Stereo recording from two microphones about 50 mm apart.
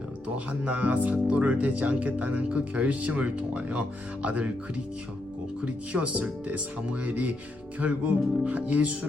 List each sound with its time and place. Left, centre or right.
0.3 s speech: right
5.6 s speech: right